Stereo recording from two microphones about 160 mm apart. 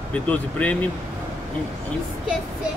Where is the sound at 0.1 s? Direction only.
10° left (ahead or behind).